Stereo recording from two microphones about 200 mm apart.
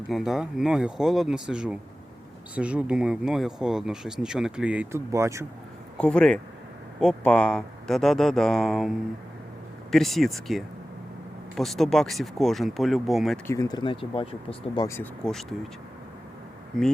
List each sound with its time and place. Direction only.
0.1 s speech: centre (ahead or behind)
6.0 s speech: 5° left (ahead or behind)
13.5 s speech: 20° left (ahead or behind)
14.8 s speech: 10° left (ahead or behind)
16.7 s speech: centre (ahead or behind)